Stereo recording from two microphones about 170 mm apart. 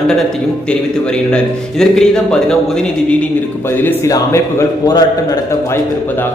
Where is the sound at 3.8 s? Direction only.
15° left (ahead or behind).